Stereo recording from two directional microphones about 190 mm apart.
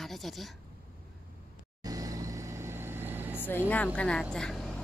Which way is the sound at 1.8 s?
20° right (ahead or behind).